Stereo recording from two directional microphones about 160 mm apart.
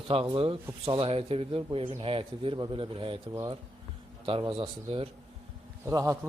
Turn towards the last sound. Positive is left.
turn(degrees=-20)  # may be behind; listen again after turning